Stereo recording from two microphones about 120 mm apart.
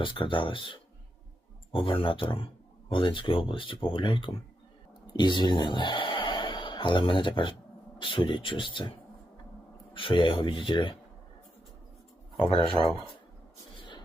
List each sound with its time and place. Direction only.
0.0 s a man's voice: 45° left (ahead or behind)